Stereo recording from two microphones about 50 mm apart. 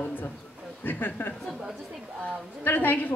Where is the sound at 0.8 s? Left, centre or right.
Left.